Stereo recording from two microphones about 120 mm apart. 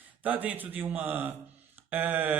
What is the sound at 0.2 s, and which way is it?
Speech, 15° right (ahead or behind).